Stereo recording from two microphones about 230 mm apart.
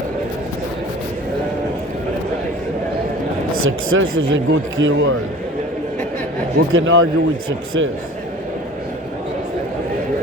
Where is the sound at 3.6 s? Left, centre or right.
Right.